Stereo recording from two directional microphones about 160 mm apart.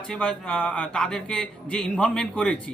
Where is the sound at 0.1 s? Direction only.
5° left (ahead or behind).